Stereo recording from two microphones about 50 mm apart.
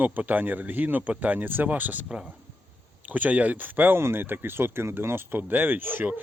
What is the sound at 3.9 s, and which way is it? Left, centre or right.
Speech, right.